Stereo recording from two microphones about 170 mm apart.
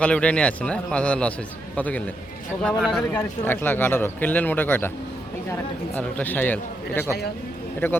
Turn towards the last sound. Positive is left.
turn(degrees=15)  # may be behind; listen again after turning